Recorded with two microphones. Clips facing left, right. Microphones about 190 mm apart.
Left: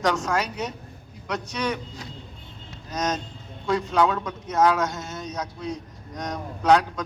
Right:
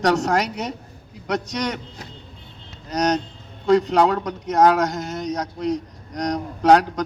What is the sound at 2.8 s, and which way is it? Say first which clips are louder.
A man's voice: right 6 dB; 70° right (ahead or behind).